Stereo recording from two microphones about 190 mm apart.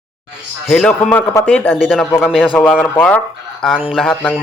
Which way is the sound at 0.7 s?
5° left (ahead or behind).